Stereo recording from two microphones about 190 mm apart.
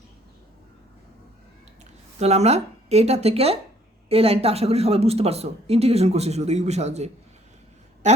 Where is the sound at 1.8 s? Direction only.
35° right (ahead or behind).